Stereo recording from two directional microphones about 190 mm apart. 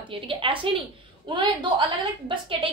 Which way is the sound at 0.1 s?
25° right (ahead or behind).